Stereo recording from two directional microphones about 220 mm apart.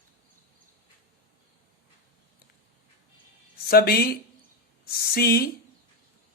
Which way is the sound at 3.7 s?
45° left (ahead or behind).